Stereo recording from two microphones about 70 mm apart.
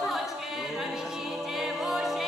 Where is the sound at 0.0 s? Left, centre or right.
Centre.